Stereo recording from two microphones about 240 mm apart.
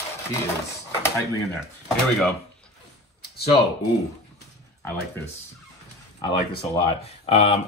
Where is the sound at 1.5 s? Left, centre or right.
Centre.